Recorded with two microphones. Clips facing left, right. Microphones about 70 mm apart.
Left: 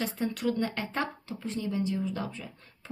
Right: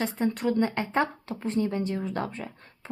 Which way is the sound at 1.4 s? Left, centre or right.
Right.